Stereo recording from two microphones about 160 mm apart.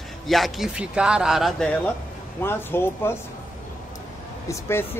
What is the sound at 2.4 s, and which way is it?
Speech, 15° left (ahead or behind).